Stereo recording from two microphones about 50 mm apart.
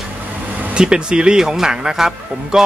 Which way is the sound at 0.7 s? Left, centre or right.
Centre.